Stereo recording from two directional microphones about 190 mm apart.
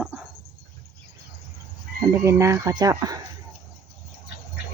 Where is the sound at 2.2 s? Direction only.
15° right (ahead or behind).